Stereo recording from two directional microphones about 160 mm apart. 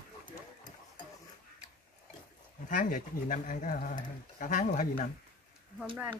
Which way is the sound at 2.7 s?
55° left (ahead or behind).